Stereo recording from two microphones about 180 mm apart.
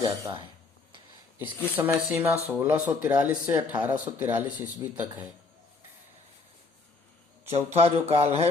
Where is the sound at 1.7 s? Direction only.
10° right (ahead or behind).